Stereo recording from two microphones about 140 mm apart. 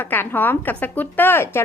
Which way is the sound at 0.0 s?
15° left (ahead or behind).